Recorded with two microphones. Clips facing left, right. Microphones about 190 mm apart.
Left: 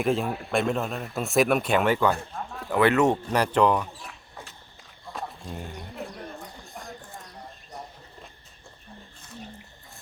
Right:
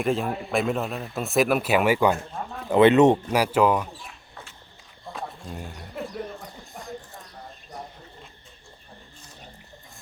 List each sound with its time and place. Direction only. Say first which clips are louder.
0.0 s speech: even; centre (ahead or behind); by 3.2 s 20° right (ahead or behind)
3.3 s speech: right 1 dB; 10° right (ahead or behind)